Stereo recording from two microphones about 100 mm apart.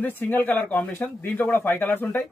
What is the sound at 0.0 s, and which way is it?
A man's voice, 20° left (ahead or behind).